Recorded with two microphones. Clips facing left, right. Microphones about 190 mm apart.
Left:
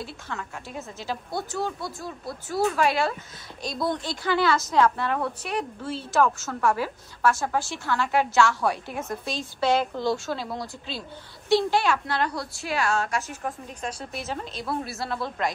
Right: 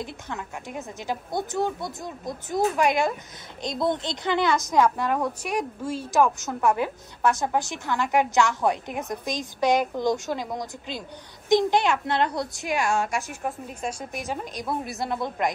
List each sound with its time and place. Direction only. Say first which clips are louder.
0.0 s a woman's voice: right 1 dB; 20° right (ahead or behind)